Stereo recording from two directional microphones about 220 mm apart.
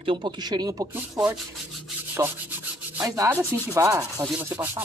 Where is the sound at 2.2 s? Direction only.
10° right (ahead or behind).